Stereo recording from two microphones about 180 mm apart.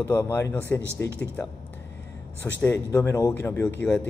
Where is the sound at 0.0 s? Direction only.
15° left (ahead or behind).